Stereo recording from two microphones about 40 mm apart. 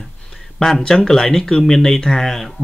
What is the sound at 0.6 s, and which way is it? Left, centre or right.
Speech, centre.